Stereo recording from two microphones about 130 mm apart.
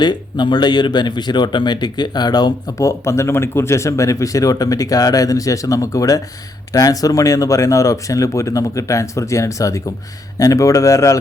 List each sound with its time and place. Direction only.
0.0 s speech: 35° left (ahead or behind)